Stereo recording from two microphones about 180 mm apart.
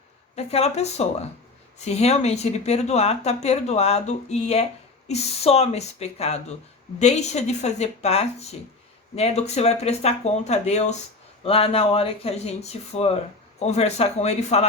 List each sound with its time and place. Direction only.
0.3 s speech: 35° left (ahead or behind)